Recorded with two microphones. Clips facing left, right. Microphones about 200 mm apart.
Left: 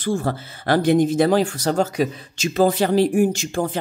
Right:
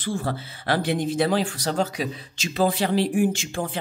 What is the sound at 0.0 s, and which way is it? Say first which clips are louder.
Speech: left 5 dB; 45° left (ahead or behind).